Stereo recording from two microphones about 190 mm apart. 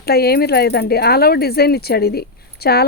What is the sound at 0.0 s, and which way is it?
Speech, 55° left (ahead or behind).